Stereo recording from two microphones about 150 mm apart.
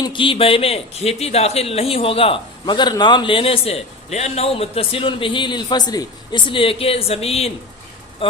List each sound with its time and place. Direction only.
0.0 s a man's voice: 35° left (ahead or behind)